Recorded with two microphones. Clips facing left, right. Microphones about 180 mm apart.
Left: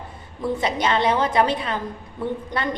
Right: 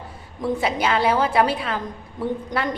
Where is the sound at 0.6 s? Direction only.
5° right (ahead or behind).